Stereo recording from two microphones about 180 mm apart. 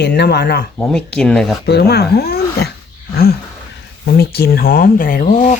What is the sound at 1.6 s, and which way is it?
Speech, 65° left (ahead or behind).